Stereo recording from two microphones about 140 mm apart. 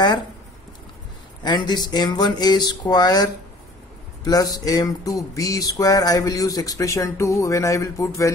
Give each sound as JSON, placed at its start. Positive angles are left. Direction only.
{"t": 1.4, "sound": "speech", "side_deg": 30}